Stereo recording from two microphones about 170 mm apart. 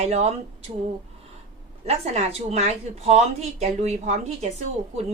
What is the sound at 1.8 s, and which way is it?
A woman's voice, 40° right (ahead or behind).